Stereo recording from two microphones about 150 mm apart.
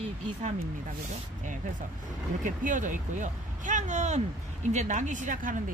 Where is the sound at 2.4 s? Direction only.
60° right (ahead or behind).